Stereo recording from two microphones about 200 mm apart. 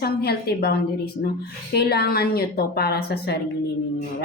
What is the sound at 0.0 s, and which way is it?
Speech, 55° left (ahead or behind).